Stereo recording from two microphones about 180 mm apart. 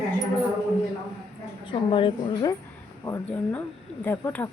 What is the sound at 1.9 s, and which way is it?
Speech, 30° left (ahead or behind).